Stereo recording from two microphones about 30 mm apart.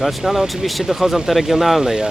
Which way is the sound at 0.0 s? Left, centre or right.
Centre.